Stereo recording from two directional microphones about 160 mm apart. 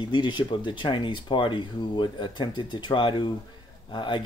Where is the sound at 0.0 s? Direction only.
30° left (ahead or behind).